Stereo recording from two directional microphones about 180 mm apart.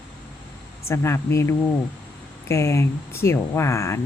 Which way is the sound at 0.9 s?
15° left (ahead or behind).